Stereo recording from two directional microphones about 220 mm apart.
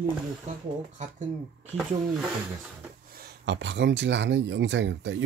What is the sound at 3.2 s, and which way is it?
Speech, 50° right (ahead or behind).